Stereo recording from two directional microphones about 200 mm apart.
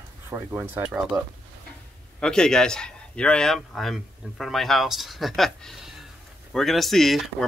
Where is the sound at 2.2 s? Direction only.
5° left (ahead or behind).